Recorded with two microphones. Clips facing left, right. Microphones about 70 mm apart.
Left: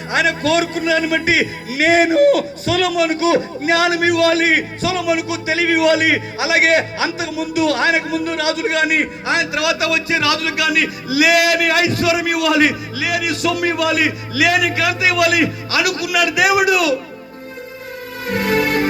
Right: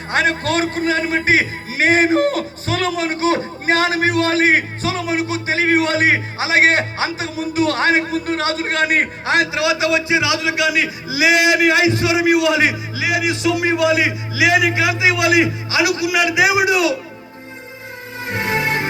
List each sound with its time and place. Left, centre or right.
0.1 s a man's voice: right
9.5 s a man's voice: right
18.3 s music: right